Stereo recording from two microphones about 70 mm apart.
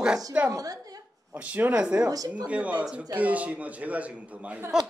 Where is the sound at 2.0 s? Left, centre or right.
Right.